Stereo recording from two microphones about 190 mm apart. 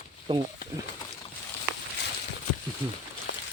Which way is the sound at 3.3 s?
80° left.